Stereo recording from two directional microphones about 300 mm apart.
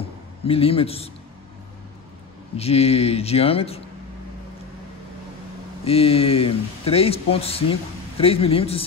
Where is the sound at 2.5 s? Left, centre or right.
Centre.